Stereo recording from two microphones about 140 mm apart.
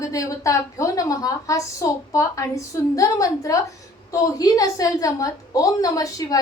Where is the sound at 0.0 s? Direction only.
25° left (ahead or behind).